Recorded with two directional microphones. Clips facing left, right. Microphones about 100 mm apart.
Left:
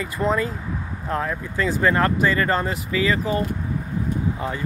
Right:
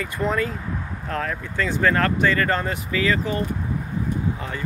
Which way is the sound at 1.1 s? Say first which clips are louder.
Left 2 dB; 15° left (ahead or behind).